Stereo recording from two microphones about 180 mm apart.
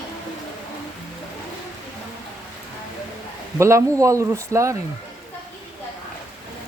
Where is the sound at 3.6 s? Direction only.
15° right (ahead or behind).